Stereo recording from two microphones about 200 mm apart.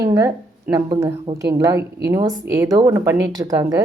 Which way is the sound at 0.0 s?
15° right (ahead or behind).